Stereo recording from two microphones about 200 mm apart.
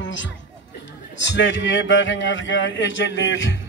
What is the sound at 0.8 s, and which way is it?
A man's voice, 65° left (ahead or behind).